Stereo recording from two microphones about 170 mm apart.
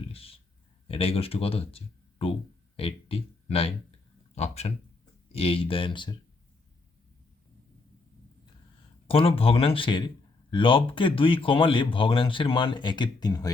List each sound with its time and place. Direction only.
0.1 s a sound: 35° left (ahead or behind)
0.9 s speech: 35° left (ahead or behind)
9.0 s speech: 35° left (ahead or behind)